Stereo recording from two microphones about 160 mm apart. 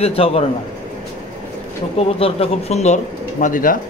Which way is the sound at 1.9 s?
40° left (ahead or behind).